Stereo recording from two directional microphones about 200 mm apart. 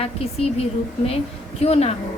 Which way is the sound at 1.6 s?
30° left (ahead or behind).